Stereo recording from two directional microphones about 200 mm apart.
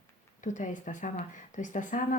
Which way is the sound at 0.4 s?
40° left (ahead or behind).